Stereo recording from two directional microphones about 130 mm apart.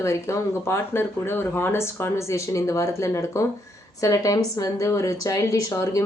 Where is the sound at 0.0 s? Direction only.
20° left (ahead or behind).